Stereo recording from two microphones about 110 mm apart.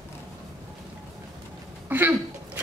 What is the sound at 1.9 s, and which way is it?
Speech, 15° right (ahead or behind).